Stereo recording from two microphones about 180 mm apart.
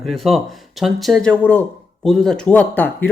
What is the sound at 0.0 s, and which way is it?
Speech, centre (ahead or behind).